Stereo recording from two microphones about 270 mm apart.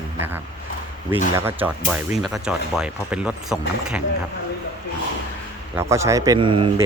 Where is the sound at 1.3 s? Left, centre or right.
Centre.